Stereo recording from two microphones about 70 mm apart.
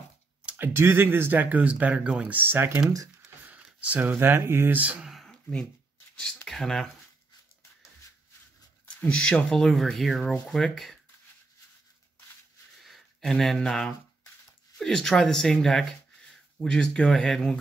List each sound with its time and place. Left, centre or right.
0.5 s speech: right
3.4 s a sound: centre
4.0 s speech: right
5.2 s a sound: centre
6.2 s speech: centre
9.0 s speech: centre
12.8 s speech: centre